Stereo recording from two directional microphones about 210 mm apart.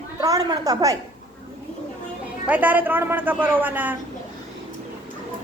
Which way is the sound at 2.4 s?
5° right (ahead or behind).